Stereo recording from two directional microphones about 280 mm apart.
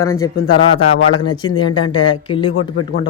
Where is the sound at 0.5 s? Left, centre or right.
Left.